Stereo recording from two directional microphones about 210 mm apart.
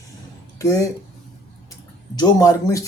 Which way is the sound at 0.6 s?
15° left (ahead or behind).